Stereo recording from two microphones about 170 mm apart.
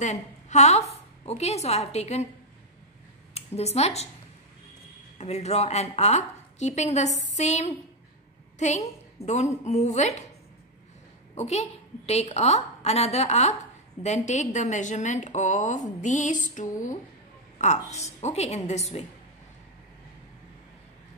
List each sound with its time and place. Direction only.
0.0 s a woman's voice: 45° left (ahead or behind)
3.3 s speech: 40° left (ahead or behind)
5.2 s a woman's voice: 40° left (ahead or behind)
11.3 s a woman's voice: 40° left (ahead or behind)